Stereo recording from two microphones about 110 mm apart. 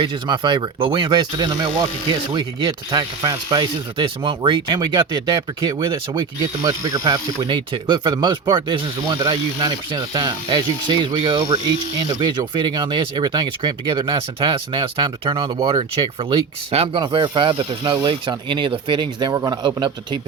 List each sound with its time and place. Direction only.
0.0 s speech: 40° right (ahead or behind)
6.6 s speech: 30° right (ahead or behind)